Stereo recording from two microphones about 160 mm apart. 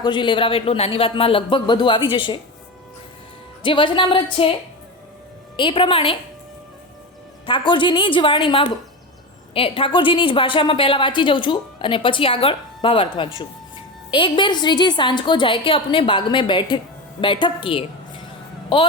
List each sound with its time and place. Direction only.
0.0 s a woman's voice: 30° left (ahead or behind)
3.6 s a woman's voice: 30° left (ahead or behind)
5.5 s a woman's voice: 30° left (ahead or behind)
7.4 s a woman's voice: 30° left (ahead or behind)